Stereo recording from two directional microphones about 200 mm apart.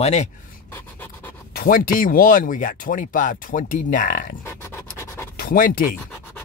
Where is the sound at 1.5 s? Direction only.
45° left (ahead or behind).